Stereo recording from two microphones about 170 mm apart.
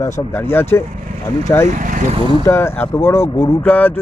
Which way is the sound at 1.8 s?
50° right (ahead or behind).